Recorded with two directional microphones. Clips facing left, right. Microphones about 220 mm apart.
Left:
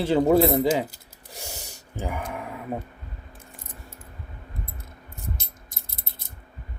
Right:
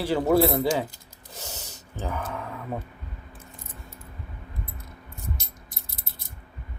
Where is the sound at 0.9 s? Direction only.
10° left (ahead or behind).